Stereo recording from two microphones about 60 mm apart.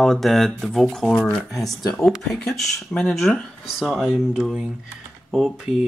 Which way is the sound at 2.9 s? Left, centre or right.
Left.